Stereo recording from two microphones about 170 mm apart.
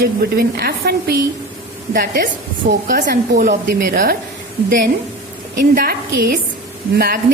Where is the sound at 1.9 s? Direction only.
55° right (ahead or behind).